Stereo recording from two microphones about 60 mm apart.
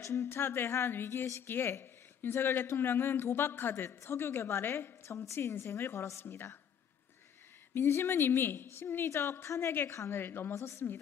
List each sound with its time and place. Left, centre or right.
0.0 s speech: left
0.3 s a woman's voice: left
7.7 s a woman's voice: left
10.5 s a woman's voice: left